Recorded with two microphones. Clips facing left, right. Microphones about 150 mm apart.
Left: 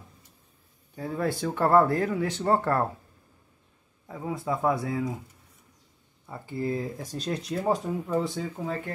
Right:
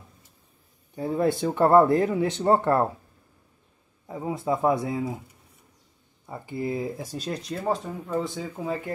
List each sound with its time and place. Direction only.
0.9 s speech: 25° right (ahead or behind)
4.1 s speech: 25° right (ahead or behind)
6.2 s speech: 15° right (ahead or behind); by 7.6 s centre (ahead or behind)
7.6 s speech: 10° left (ahead or behind)
8.3 s speech: 5° right (ahead or behind)